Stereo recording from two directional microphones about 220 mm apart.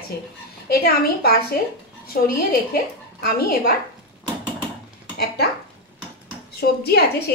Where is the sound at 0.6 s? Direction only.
45° left (ahead or behind).